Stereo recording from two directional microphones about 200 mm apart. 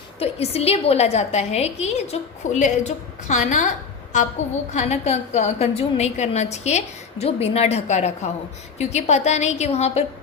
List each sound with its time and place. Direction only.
0.2 s a woman's voice: 30° left (ahead or behind)
4.7 s a woman's voice: 35° left (ahead or behind)